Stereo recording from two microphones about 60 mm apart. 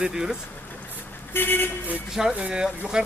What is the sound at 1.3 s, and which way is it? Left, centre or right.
Speech, left.